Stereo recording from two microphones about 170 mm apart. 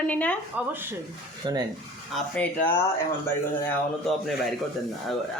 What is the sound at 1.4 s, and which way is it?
Speech, 30° right (ahead or behind).